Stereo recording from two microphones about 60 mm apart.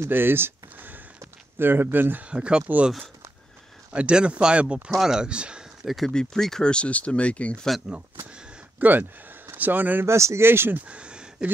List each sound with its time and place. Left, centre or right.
0.0 s a sound: right
1.6 s speech: right
2.2 s speech: centre
3.9 s speech: centre
5.9 s speech: centre; by 7.5 s left
8.7 s speech: right
10.0 s speech: right
10.9 s a sound: centre